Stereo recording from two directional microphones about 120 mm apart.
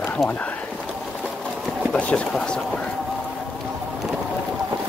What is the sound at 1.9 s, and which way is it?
Speech, 10° left (ahead or behind).